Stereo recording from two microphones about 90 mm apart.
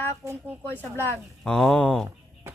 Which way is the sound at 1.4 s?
5° left (ahead or behind).